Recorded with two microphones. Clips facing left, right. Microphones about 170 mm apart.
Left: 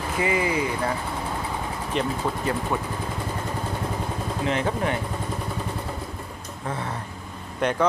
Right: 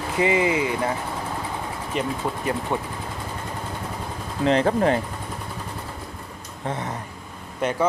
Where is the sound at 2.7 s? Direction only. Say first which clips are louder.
Right 1 dB; 25° right (ahead or behind).